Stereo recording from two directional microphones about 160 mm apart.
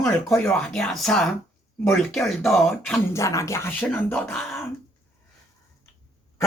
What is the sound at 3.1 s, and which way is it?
Speech, 20° left (ahead or behind).